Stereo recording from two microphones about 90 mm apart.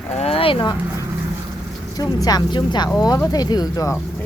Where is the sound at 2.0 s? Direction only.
45° left (ahead or behind).